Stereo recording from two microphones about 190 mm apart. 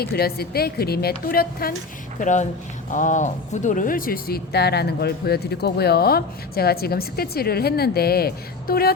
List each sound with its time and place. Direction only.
0.0 s a woman's voice: 55° left (ahead or behind)
2.1 s speech: 40° left (ahead or behind)